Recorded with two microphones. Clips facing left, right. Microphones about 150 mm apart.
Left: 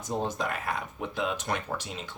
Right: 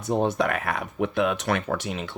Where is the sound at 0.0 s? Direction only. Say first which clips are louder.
Right 7 dB; 70° right (ahead or behind).